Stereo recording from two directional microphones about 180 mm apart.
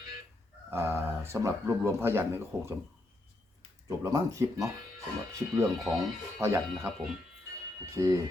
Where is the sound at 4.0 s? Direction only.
20° right (ahead or behind).